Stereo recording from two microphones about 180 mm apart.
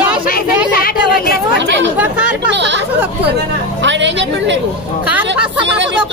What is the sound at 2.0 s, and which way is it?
Chatter, 5° right (ahead or behind).